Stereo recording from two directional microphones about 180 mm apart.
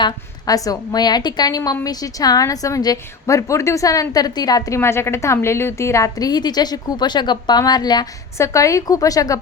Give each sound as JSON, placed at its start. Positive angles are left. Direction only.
{"t": 0.0, "sound": "a woman's voice", "side_deg": 20}